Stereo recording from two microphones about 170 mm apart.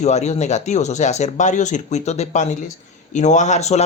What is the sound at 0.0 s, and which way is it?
Speech, 40° left (ahead or behind).